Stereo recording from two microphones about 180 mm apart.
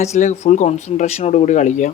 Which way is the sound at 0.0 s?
40° left (ahead or behind).